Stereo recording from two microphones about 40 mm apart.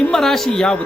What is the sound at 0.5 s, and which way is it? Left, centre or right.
Speech, centre.